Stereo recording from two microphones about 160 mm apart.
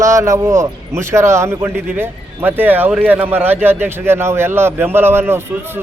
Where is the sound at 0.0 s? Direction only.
20° right (ahead or behind).